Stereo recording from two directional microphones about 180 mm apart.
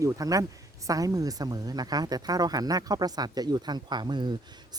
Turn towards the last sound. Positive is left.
turn(degrees=-25)  # may be behind; listen again after turning